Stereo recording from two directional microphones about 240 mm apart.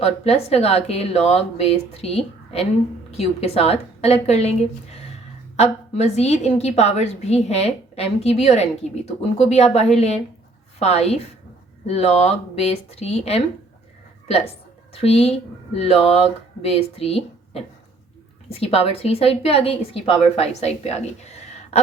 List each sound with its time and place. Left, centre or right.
0.0 s a woman's voice: left
5.5 s a woman's voice: left